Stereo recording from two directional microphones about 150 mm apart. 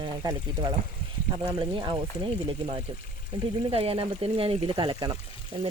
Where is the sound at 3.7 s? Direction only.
40° right (ahead or behind).